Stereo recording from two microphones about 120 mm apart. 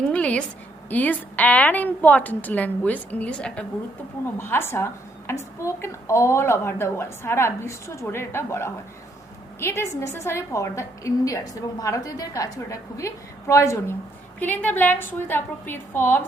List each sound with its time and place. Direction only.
0.1 s a woman's voice: 10° left (ahead or behind)
4.4 s a woman's voice: 20° left (ahead or behind)
14.3 s a woman's voice: 15° left (ahead or behind)